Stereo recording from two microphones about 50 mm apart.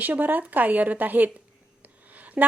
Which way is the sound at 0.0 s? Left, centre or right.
Right.